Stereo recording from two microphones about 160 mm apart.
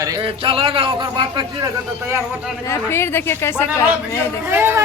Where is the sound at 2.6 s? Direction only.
15° left (ahead or behind).